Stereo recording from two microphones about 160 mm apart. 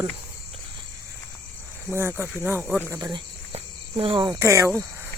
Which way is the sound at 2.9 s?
25° right (ahead or behind).